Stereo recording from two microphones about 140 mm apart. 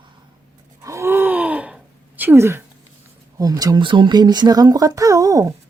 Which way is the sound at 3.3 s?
25° right (ahead or behind).